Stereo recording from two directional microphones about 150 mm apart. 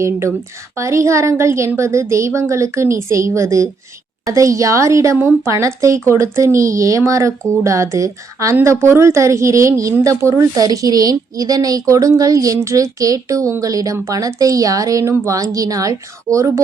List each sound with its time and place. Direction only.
0.8 s a woman's voice: 20° right (ahead or behind)